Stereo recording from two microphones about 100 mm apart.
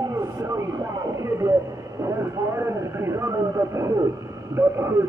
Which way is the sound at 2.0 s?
25° right (ahead or behind).